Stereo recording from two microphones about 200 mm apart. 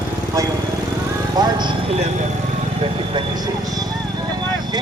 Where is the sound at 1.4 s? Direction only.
20° right (ahead or behind).